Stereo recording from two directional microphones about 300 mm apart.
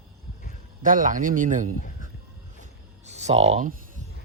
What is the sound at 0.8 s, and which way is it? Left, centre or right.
Speech, right.